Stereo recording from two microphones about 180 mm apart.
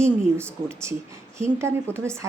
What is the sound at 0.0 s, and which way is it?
Speech, 15° right (ahead or behind).